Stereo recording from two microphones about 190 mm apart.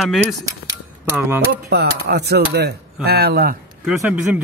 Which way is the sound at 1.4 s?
55° right (ahead or behind).